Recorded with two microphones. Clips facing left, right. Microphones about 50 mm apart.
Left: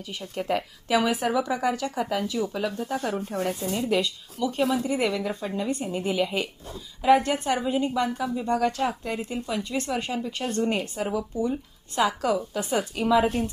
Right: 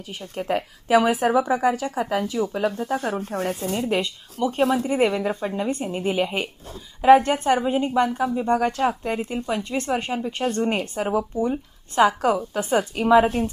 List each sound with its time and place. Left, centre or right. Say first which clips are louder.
0.4 s a woman's voice: right 4 dB; right
3.2 s speech: right 2 dB; right
3.8 s a woman's voice: right 1 dB; right